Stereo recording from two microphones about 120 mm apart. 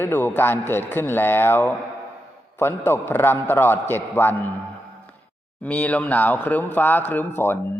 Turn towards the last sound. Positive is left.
turn(degrees=20)  # may be behind; listen again after turning